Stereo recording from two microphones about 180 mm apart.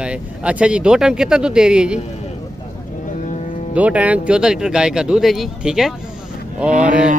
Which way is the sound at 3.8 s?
10° right (ahead or behind).